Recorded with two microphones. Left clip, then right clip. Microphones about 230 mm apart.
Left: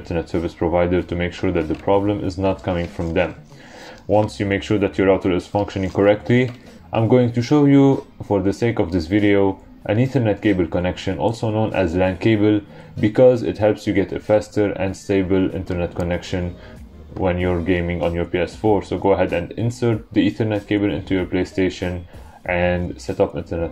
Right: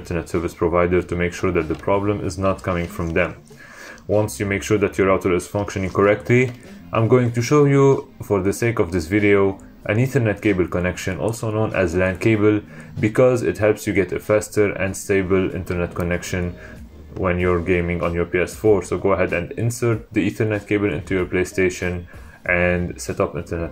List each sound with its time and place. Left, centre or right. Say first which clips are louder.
0.1 s speech: left 1 dB; centre
4.4 s speech: even; centre
13.1 s speech: left 3 dB; centre